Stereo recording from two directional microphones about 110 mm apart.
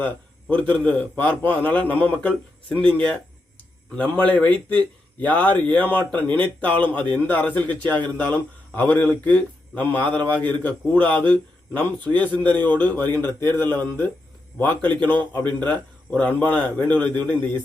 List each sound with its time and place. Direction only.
0.4 s speech: 10° left (ahead or behind)